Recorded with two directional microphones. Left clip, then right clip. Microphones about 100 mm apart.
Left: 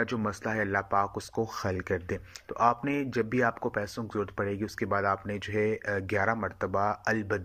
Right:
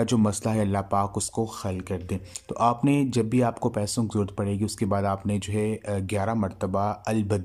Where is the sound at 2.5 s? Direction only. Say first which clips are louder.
Right 3 dB; 50° right (ahead or behind).